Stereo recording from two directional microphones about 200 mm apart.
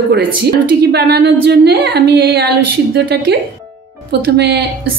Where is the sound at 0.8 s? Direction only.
55° right (ahead or behind).